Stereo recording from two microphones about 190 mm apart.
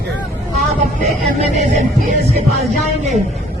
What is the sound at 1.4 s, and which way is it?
Speech, 35° right (ahead or behind).